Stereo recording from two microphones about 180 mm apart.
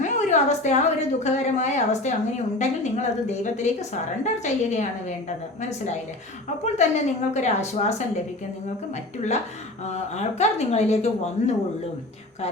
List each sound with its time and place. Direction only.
0.0 s a woman's voice: 40° left (ahead or behind)
9.8 s speech: 40° left (ahead or behind)